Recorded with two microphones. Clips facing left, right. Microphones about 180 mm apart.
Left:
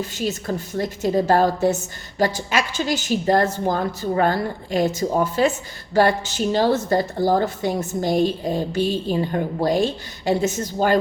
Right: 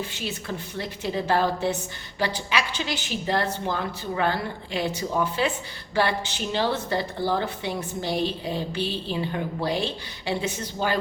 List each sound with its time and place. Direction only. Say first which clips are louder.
0.0 s a woman's voice: left 7 dB; 40° left (ahead or behind)